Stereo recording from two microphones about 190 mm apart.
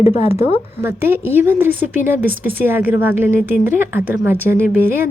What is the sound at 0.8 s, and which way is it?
Speech, 10° right (ahead or behind).